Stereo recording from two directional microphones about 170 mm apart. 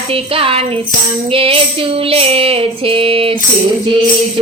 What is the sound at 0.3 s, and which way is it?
Female singing, 35° right (ahead or behind).